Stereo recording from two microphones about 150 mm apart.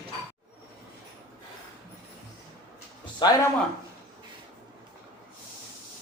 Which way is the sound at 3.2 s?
30° left (ahead or behind).